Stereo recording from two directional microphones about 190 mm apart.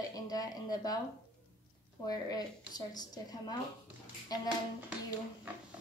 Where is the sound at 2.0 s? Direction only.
20° left (ahead or behind).